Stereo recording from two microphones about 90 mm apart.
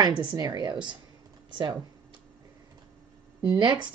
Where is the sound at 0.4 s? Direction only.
45° right (ahead or behind).